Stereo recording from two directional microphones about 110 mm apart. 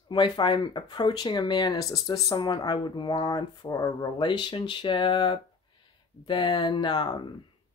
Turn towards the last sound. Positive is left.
turn(degrees=40)  # may be behind; listen again after turning